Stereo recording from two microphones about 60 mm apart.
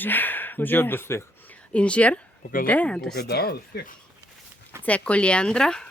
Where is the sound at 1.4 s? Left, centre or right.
Left.